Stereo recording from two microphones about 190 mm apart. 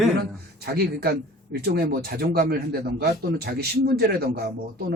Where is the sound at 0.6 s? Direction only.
55° right (ahead or behind).